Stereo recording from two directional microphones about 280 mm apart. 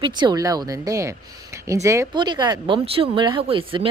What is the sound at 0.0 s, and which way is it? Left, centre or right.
Speech, centre.